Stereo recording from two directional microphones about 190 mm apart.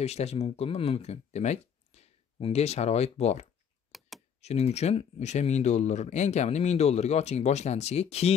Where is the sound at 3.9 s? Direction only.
Centre (ahead or behind).